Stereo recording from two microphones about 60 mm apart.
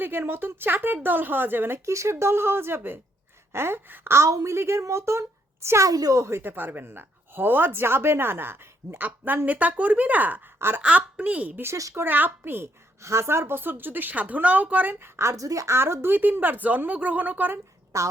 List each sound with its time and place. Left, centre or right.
0.0 s speech: right
1.8 s speech: right
4.1 s speech: right
5.9 s speech: right
6.2 s speech: right
9.0 s speech: right
13.0 s speech: right
15.4 s a woman's voice: right
15.7 s speech: right
17.9 s a woman's voice: right